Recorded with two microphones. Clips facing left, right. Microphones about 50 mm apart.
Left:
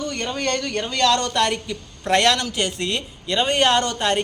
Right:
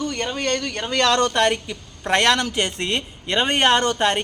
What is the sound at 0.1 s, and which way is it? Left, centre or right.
Speech, right.